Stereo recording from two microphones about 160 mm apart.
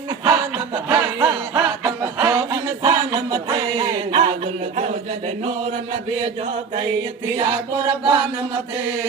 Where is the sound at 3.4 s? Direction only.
25° right (ahead or behind).